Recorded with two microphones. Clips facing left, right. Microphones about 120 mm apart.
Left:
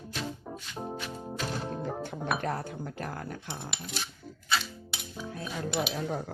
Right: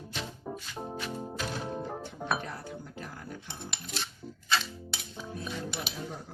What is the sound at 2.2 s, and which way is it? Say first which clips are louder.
Speech: left 2 dB; 55° left (ahead or behind).